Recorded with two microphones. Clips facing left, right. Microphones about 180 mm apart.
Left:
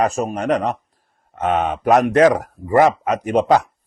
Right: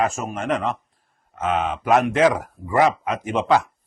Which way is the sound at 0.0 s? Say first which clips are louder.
Left 4 dB; 35° left (ahead or behind).